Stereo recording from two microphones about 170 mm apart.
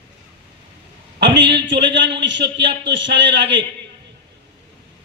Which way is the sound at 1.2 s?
90° right.